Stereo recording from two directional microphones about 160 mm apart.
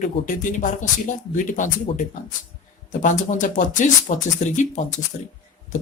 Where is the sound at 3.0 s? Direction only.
50° left (ahead or behind).